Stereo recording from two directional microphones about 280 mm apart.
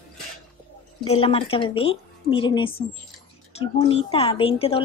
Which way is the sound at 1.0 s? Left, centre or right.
Left.